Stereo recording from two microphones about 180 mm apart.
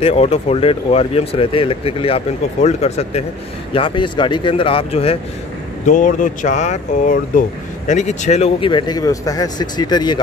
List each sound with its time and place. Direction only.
0.0 s speech: 35° left (ahead or behind)
5.9 s speech: 45° left (ahead or behind); by 10.1 s 25° left (ahead or behind)